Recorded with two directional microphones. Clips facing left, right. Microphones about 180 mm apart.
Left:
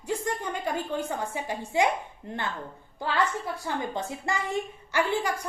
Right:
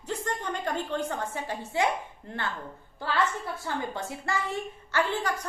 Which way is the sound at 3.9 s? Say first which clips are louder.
Left 1 dB; 15° left (ahead or behind).